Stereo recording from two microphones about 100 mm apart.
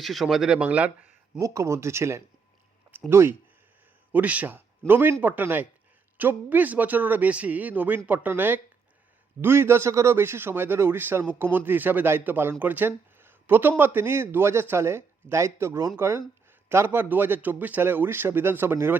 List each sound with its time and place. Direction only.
0.0 s speech: centre (ahead or behind)
1.4 s a man's voice: 30° right (ahead or behind)